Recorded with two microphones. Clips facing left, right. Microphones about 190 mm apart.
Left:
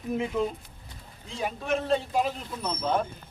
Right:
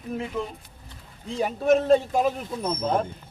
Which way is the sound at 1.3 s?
40° right (ahead or behind).